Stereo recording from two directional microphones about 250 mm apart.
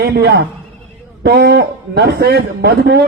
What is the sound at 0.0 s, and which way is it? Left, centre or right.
A man's voice, right.